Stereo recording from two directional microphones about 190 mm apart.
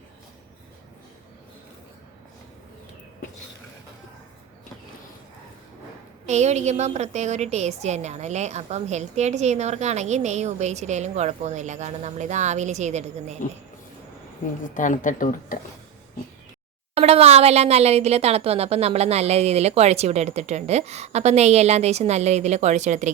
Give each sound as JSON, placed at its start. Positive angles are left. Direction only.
{"t": 6.2, "sound": "a woman's voice", "side_deg": -35}
{"t": 14.8, "sound": "speech", "side_deg": 45}
{"t": 16.9, "sound": "a woman's voice", "side_deg": -35}